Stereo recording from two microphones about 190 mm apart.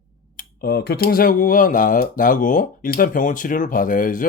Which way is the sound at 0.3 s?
50° left (ahead or behind).